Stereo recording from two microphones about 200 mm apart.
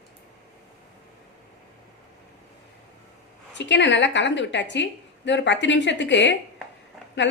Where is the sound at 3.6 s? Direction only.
60° left (ahead or behind).